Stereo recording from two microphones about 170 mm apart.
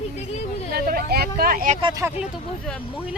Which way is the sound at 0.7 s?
65° right (ahead or behind).